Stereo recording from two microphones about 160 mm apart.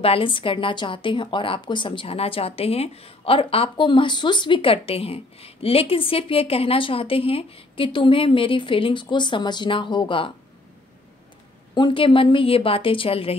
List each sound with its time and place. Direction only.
0.0 s speech: 35° left (ahead or behind)
11.7 s speech: 30° left (ahead or behind)